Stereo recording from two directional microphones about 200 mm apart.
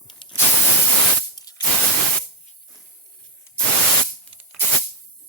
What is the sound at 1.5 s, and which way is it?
Spray, 20° left (ahead or behind).